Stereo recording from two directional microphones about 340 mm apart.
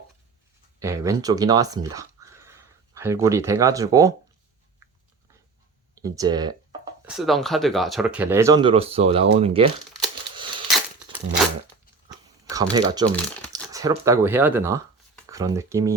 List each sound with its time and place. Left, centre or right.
0.8 s speech: centre
6.0 s speech: centre
7.0 s speech: centre
12.0 s chewing: centre
12.7 s speech: centre